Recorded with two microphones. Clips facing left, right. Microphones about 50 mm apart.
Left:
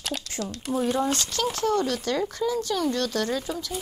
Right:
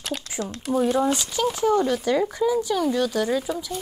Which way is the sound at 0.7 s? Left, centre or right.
Centre.